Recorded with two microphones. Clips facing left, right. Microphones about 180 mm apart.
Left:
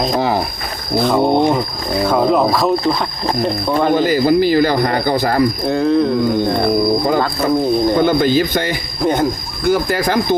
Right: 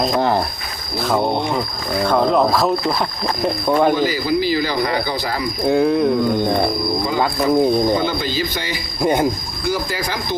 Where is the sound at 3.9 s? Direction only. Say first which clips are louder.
Left 6 dB; 50° left (ahead or behind).